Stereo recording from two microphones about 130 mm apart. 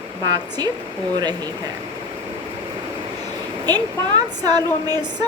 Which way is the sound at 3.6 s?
30° right (ahead or behind).